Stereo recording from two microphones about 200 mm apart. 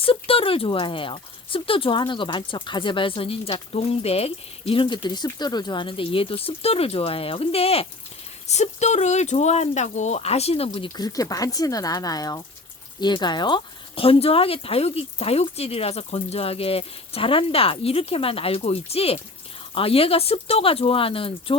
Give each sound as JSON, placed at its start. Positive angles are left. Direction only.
{"t": 0.0, "sound": "speech", "side_deg": 25}